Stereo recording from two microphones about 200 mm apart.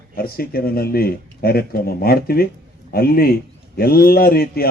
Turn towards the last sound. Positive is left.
turn(degrees=50)  # may be behind; listen again after turning